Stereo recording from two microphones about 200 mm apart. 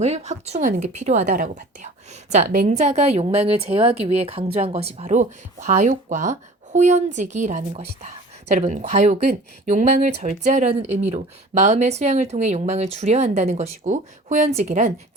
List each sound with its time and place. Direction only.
0.0 s speech: 35° right (ahead or behind)